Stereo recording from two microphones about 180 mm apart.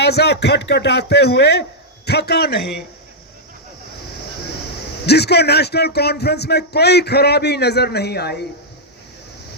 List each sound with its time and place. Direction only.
0.0 s speech: 65° left (ahead or behind)
5.0 s speech: 65° left (ahead or behind)